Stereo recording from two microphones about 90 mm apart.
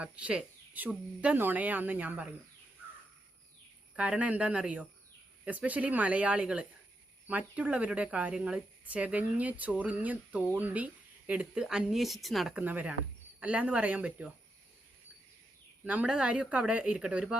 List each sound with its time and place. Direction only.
0.0 s speech: 15° right (ahead or behind)
3.9 s speech: 15° right (ahead or behind)
12.5 s speech: 20° right (ahead or behind)
15.8 s speech: 15° right (ahead or behind)